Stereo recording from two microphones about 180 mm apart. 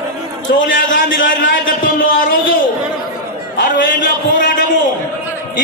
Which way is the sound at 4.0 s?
45° left (ahead or behind).